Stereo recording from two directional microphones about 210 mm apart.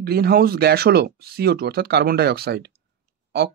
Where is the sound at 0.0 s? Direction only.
50° right (ahead or behind).